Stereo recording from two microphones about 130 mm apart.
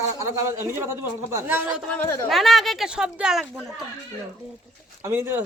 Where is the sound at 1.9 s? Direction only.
20° left (ahead or behind).